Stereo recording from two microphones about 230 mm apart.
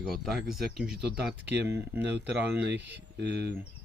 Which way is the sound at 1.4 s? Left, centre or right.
Right.